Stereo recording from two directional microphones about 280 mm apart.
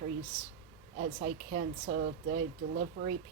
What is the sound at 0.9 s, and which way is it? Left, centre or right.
A woman's voice, right.